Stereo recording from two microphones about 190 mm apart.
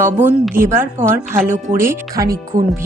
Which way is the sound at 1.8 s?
15° right (ahead or behind).